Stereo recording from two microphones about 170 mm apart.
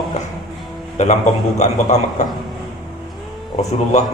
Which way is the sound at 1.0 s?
45° left (ahead or behind).